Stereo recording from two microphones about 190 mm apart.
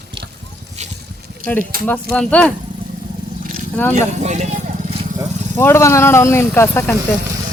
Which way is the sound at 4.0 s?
35° right (ahead or behind).